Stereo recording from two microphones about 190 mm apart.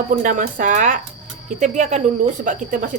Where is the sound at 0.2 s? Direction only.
45° right (ahead or behind).